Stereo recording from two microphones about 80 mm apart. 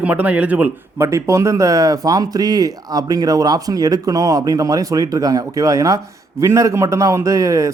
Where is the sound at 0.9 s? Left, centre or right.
Right.